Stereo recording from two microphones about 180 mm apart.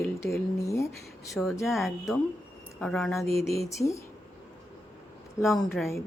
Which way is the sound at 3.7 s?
15° left (ahead or behind).